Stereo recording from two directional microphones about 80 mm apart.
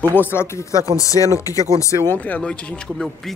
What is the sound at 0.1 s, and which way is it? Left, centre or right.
Speech, left.